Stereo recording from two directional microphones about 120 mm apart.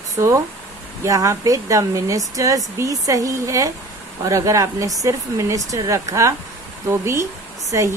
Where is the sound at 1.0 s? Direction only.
25° right (ahead or behind).